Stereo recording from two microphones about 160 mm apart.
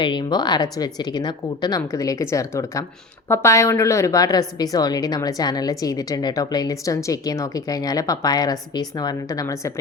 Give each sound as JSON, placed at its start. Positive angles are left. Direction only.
{"t": 0.0, "sound": "a woman's voice", "side_deg": 30}